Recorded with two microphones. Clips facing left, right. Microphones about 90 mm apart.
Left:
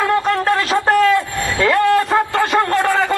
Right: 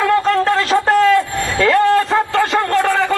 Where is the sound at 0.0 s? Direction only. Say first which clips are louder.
Right 2 dB; 20° left (ahead or behind).